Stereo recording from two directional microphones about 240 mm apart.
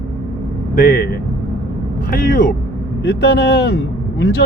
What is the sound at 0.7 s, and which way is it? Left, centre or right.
Speech, left.